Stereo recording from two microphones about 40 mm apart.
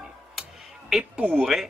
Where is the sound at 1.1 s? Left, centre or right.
Right.